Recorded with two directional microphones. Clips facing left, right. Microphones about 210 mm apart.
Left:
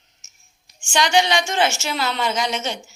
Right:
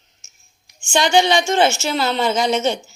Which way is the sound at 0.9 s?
25° right (ahead or behind).